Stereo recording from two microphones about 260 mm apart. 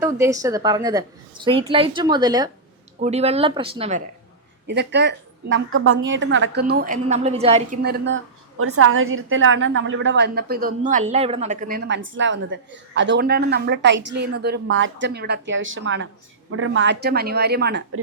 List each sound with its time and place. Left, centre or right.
0.0 s a woman's voice: centre
4.6 s a woman's voice: right
7.8 s a woman's voice: right